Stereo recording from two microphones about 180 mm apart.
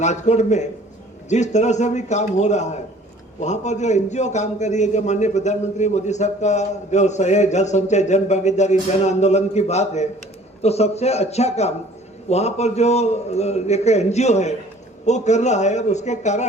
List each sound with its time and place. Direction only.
0.0 s a man's voice: 40° left (ahead or behind)